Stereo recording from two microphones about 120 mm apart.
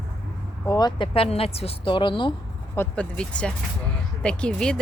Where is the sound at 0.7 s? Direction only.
35° left (ahead or behind).